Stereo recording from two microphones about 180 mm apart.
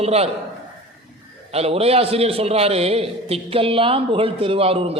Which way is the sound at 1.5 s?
35° right (ahead or behind).